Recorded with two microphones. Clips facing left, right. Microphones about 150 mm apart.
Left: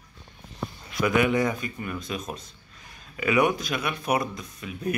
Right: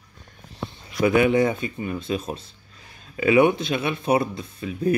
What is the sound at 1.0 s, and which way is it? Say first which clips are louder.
Speech: right 4 dB; 30° right (ahead or behind).